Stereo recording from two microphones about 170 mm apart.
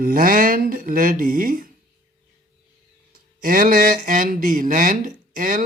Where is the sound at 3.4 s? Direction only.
55° right (ahead or behind).